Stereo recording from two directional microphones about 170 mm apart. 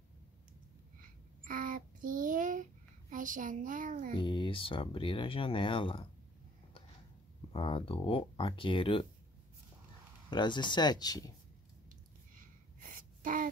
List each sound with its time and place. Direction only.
1.4 s child singing: 55° right (ahead or behind)
4.2 s speech: 30° left (ahead or behind)
7.5 s speech: 30° left (ahead or behind)
10.3 s speech: 25° left (ahead or behind)
12.4 s gasp: 50° right (ahead or behind)